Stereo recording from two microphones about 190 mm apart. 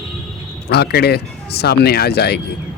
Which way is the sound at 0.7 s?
60° left (ahead or behind).